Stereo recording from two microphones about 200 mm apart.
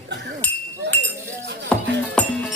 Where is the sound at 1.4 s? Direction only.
60° right (ahead or behind).